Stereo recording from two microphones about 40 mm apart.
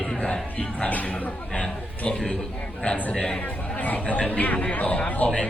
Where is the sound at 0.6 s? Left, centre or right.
Left.